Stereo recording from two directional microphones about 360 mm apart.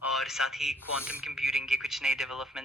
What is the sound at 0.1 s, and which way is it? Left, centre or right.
A man's voice, centre.